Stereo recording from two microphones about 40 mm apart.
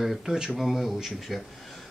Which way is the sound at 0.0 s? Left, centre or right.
Centre.